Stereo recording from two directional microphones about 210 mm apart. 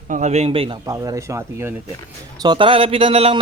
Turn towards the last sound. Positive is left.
turn(degrees=-30)  # may be behind; listen again after turning